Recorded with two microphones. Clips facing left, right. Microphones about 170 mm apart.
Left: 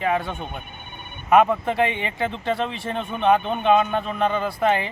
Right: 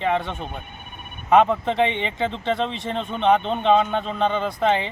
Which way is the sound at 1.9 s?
25° right (ahead or behind).